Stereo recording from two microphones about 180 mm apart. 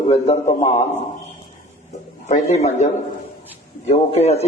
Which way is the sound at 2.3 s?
40° left (ahead or behind).